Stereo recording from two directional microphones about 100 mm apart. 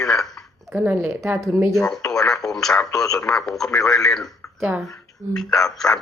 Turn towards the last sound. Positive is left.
turn(degrees=5)  # may be behind; listen again after turning